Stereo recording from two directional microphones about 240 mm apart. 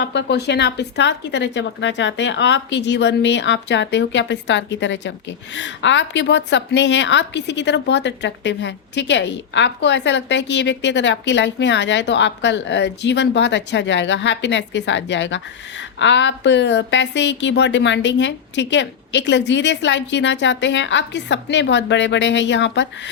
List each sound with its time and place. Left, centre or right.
0.0 s a woman's voice: left